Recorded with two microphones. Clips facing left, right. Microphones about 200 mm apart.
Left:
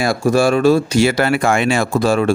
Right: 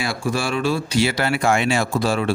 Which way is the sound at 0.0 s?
45° left (ahead or behind).